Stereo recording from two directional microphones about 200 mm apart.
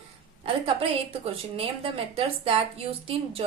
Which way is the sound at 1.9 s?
30° right (ahead or behind).